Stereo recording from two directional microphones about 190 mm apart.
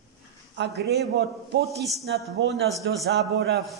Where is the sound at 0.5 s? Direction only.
60° right (ahead or behind).